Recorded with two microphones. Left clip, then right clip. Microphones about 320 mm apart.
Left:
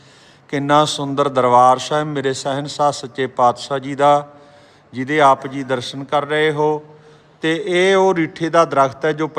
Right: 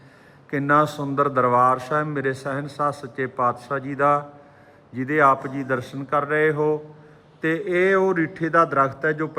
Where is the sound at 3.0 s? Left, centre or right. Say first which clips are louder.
Left 7 dB; centre.